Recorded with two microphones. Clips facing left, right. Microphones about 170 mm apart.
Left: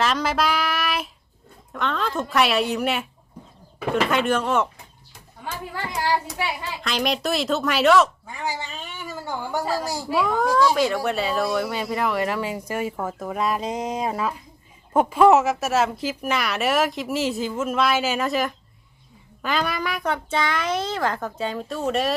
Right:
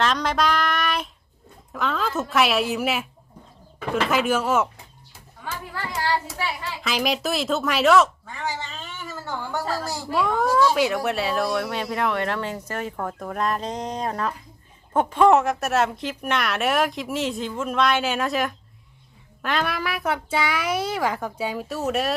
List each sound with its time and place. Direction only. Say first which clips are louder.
0.0 s child singing: even; 5° left (ahead or behind)
1.7 s speech: even; centre (ahead or behind)
4.1 s speech: right 3 dB; 5° right (ahead or behind)
5.5 s a sound: left 1 dB; 20° left (ahead or behind)
6.8 s speech: even; centre (ahead or behind)
8.3 s a woman's voice: left 1 dB; 10° left (ahead or behind)
10.2 s a child's voice: even; centre (ahead or behind)